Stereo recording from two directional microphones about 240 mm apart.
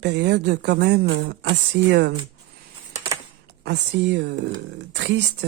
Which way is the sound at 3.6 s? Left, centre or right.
Right.